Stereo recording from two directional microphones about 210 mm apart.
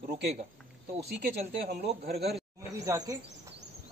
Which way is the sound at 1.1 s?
50° right (ahead or behind).